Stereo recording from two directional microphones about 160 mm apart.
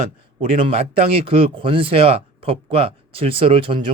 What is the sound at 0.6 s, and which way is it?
Speech, 35° right (ahead or behind).